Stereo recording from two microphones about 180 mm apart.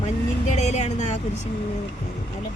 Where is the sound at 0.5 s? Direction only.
40° left (ahead or behind).